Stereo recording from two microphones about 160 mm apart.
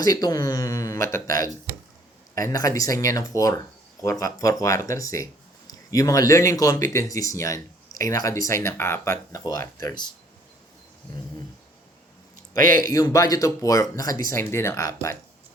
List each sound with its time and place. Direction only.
0.0 s speech: 25° left (ahead or behind)
2.3 s speech: 20° left (ahead or behind)
12.5 s speech: 60° right (ahead or behind)
12.9 s speech: 20° left (ahead or behind)